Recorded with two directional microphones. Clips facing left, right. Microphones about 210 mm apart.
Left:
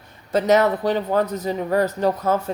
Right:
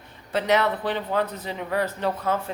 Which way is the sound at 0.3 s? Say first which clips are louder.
Left 5 dB; 40° left (ahead or behind).